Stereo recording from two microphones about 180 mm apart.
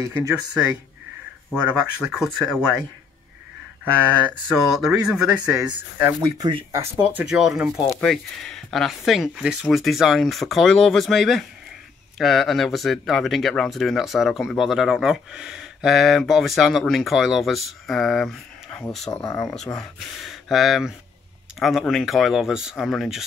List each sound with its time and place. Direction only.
0.0 s speech: 15° right (ahead or behind)
1.7 s speech: 5° right (ahead or behind)
4.6 s speech: centre (ahead or behind)
6.2 s speech: 20° right (ahead or behind); by 19.2 s 5° left (ahead or behind)
19.2 s speech: 15° left (ahead or behind)
19.8 s speech: centre (ahead or behind)